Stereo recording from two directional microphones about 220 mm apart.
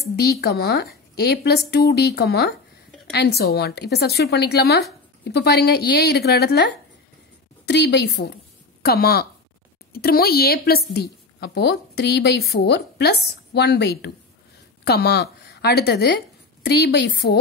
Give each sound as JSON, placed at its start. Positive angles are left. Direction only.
{"t": 0.1, "sound": "a woman's voice", "side_deg": 45}